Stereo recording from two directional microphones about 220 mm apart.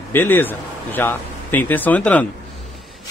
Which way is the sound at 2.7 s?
Centre (ahead or behind).